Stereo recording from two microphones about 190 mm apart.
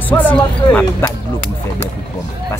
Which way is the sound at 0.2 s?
10° left (ahead or behind).